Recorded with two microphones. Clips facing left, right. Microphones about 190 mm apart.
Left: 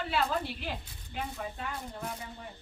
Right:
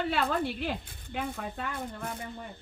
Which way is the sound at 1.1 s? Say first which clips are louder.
Right 3 dB; 55° right (ahead or behind).